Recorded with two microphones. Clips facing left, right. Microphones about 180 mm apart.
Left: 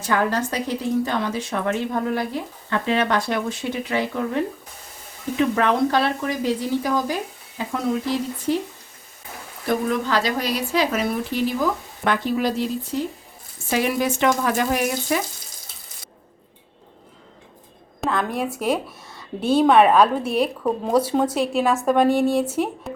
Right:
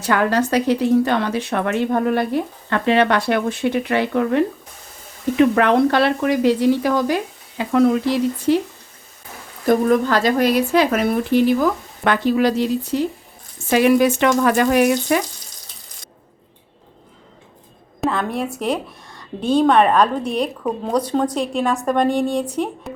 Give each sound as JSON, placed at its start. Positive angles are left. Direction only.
{"t": 0.0, "sound": "speech", "side_deg": -70}
{"t": 9.6, "sound": "speech", "side_deg": -45}
{"t": 18.0, "sound": "a woman's voice", "side_deg": 0}